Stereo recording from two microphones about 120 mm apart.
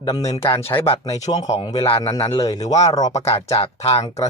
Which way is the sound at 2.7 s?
70° left (ahead or behind).